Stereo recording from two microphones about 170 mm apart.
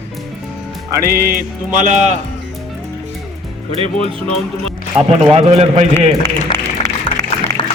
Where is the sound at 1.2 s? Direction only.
60° right (ahead or behind).